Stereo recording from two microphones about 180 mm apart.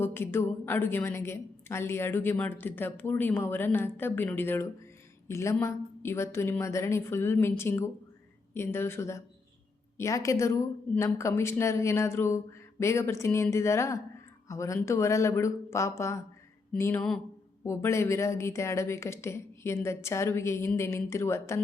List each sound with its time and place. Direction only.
0.0 s a woman's voice: 10° left (ahead or behind)